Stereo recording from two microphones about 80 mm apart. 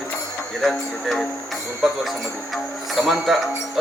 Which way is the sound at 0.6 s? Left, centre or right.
Centre.